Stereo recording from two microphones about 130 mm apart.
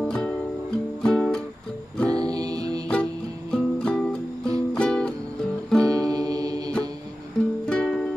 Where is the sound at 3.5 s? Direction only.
5° left (ahead or behind).